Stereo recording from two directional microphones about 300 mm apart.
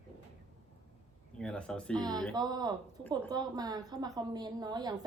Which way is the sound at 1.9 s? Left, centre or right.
Centre.